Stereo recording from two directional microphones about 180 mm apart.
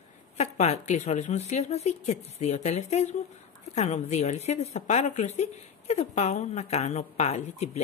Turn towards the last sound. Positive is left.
turn(degrees=40)  # may be behind; listen again after turning